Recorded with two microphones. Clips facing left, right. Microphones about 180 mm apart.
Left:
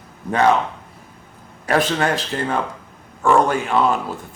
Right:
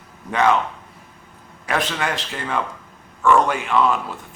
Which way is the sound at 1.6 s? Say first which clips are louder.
Left 5 dB; 40° left (ahead or behind).